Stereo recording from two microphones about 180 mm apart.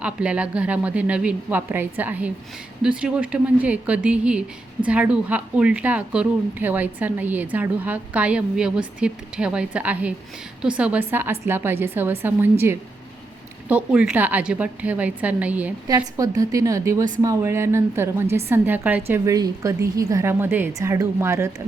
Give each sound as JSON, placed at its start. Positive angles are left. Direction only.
{"t": 0.0, "sound": "a woman's voice", "side_deg": -5}